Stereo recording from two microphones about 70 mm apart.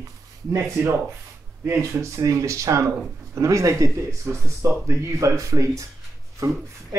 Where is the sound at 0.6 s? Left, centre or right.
Right.